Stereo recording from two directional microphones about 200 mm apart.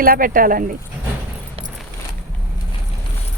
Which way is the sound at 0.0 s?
45° right (ahead or behind).